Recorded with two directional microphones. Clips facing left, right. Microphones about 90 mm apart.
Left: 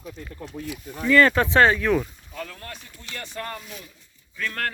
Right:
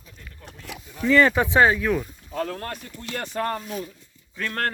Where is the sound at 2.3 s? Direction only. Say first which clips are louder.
Right 8 dB; 40° right (ahead or behind).